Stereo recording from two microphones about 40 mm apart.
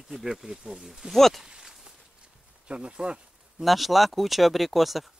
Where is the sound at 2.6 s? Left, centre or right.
Right.